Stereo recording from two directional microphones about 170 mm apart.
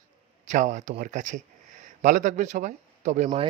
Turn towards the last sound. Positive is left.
turn(degrees=-45)  # may be behind; listen again after turning